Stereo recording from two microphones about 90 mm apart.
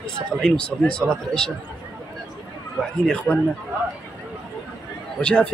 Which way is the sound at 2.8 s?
10° left (ahead or behind).